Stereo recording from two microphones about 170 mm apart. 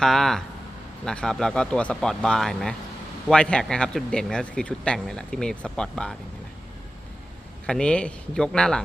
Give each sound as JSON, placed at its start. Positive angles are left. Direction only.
{"t": 0.0, "sound": "a man's voice", "side_deg": 0}
{"t": 7.7, "sound": "a man's voice", "side_deg": 5}